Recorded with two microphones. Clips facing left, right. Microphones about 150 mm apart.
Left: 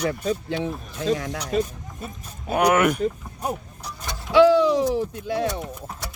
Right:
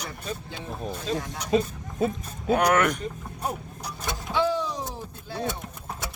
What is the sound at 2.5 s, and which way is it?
Speech, 10° left (ahead or behind).